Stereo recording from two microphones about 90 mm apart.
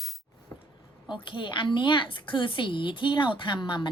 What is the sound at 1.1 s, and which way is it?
A woman's voice, 60° left (ahead or behind).